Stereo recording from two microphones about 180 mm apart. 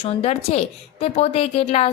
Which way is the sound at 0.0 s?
35° left (ahead or behind).